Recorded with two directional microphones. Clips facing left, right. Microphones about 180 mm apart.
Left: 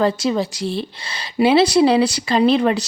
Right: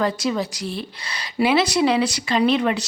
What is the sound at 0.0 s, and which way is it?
A woman's voice, 30° left (ahead or behind).